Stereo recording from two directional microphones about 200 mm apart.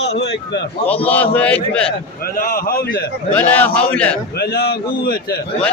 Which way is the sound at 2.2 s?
45° left (ahead or behind).